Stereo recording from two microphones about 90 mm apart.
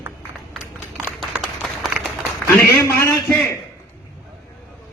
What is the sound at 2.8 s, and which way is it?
Speech, 30° left (ahead or behind).